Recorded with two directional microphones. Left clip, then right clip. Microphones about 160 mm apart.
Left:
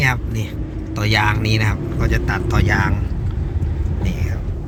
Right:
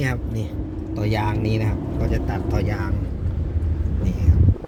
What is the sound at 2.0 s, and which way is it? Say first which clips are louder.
Speech: left 6 dB; 65° left (ahead or behind).